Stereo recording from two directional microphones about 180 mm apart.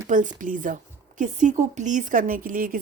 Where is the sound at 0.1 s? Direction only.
45° right (ahead or behind).